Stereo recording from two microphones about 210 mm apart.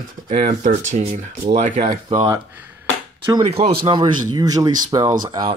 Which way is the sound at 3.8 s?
20° right (ahead or behind).